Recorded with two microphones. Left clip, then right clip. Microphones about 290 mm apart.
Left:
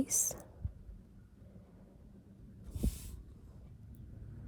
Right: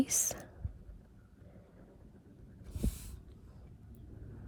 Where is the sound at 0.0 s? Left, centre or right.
Left.